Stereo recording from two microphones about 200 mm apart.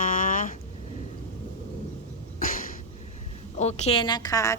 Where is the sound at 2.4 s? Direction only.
45° left (ahead or behind).